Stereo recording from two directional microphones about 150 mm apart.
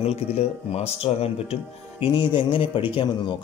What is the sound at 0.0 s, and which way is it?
Speech, 45° left (ahead or behind).